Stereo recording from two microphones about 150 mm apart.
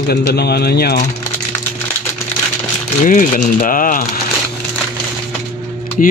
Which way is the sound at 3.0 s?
65° left (ahead or behind).